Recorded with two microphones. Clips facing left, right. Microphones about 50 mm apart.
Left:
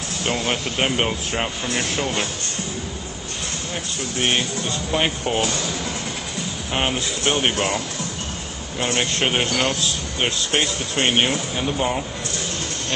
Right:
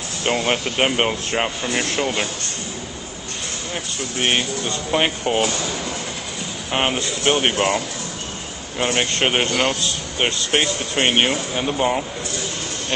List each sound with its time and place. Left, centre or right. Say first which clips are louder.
0.4 s speech: right 3 dB; centre
4.2 s speech: right 1 dB; centre
6.7 s speech: right 2 dB; centre